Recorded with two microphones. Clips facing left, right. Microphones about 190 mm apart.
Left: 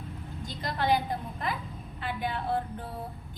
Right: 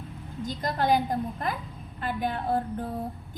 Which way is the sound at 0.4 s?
45° right (ahead or behind).